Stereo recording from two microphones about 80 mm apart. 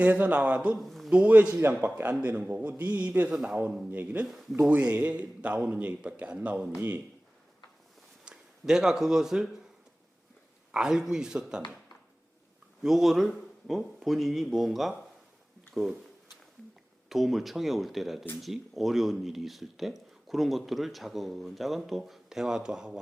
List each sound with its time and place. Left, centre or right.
0.0 s a man's voice: centre
0.8 s a sound: centre
1.1 s a man's voice: centre
8.2 s speech: centre
10.7 s a man's voice: centre
12.8 s speech: centre
17.1 s speech: centre